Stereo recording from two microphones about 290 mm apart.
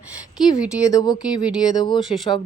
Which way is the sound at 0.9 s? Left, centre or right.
Centre.